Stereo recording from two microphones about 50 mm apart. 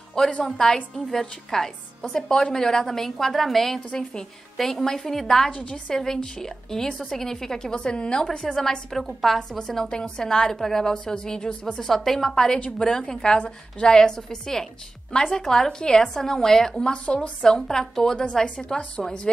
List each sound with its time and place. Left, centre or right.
0.2 s a woman's voice: centre
3.9 s a woman's voice: centre
4.6 s a woman's voice: centre
12.5 s a woman's voice: left
12.8 s a woman's voice: centre